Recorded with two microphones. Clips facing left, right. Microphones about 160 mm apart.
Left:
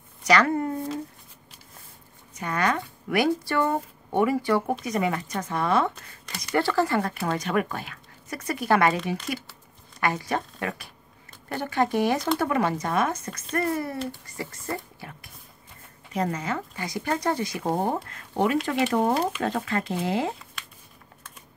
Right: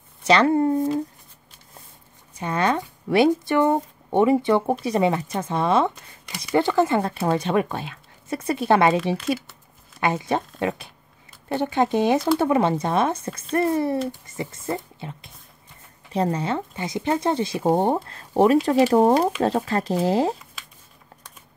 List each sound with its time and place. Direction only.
0.2 s speech: 25° right (ahead or behind)
2.3 s speech: 25° right (ahead or behind)